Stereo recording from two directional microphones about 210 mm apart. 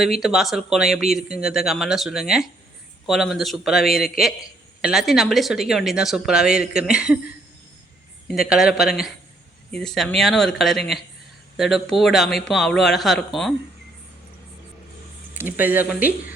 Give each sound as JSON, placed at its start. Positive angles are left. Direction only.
{"t": 0.0, "sound": "speech", "side_deg": 0}
{"t": 8.3, "sound": "speech", "side_deg": 0}
{"t": 15.4, "sound": "speech", "side_deg": -10}